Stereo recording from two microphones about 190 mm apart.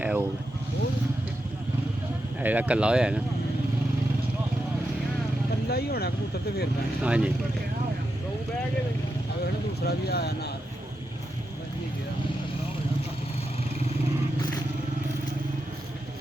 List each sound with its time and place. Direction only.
0.0 s vehicle: 10° right (ahead or behind)
2.4 s speech: 10° right (ahead or behind)
5.6 s speech: 55° left (ahead or behind)
7.0 s speech: 5° right (ahead or behind)
9.8 s speech: 55° left (ahead or behind)